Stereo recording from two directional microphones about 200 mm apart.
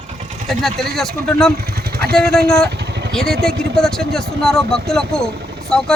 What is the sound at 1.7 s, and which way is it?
Vehicle, 50° right (ahead or behind).